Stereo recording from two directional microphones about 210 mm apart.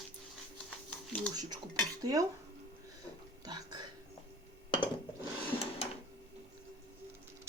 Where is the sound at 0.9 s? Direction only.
5° left (ahead or behind).